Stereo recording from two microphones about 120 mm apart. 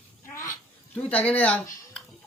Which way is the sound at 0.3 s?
25° left (ahead or behind).